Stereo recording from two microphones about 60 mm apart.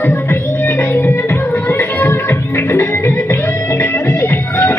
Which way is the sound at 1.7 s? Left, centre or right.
Left.